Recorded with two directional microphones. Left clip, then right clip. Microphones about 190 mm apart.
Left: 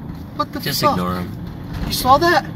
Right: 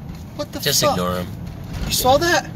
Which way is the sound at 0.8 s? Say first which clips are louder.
Left 4 dB; 20° right (ahead or behind).